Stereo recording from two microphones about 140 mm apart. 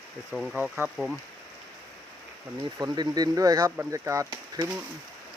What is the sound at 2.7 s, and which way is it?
Speech, 30° right (ahead or behind).